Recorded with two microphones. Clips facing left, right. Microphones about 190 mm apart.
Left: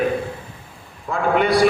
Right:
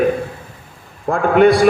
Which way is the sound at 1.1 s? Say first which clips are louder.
Right 7 dB; 50° right (ahead or behind).